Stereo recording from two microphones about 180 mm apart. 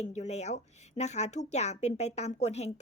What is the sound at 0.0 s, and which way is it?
A woman's voice, 40° left (ahead or behind).